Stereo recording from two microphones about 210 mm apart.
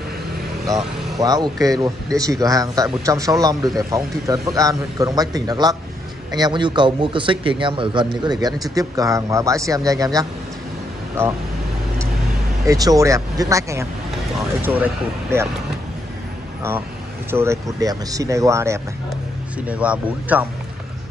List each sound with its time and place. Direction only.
1.2 s a man's voice: 20° right (ahead or behind)
12.6 s a man's voice: 15° right (ahead or behind)
17.3 s a man's voice: 10° right (ahead or behind)